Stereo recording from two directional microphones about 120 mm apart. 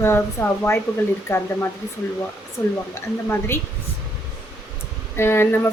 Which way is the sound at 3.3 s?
20° left (ahead or behind).